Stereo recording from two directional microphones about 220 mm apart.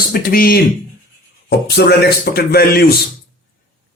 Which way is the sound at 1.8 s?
45° left (ahead or behind).